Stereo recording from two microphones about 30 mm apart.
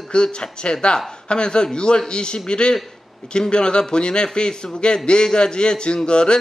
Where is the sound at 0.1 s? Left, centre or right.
Left.